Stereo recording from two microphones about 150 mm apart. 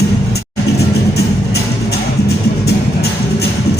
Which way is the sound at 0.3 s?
90° left.